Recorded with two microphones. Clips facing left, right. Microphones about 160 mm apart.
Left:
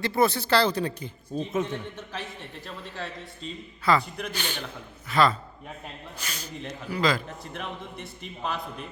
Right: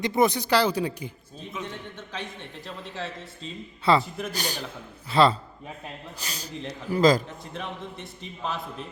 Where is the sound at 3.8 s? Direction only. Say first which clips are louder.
Right 2 dB; 30° right (ahead or behind).